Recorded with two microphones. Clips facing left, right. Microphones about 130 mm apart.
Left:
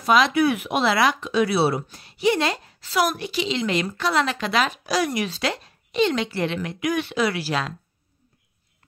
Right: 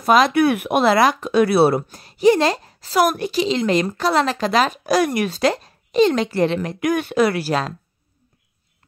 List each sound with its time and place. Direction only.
0.0 s speech: 45° right (ahead or behind)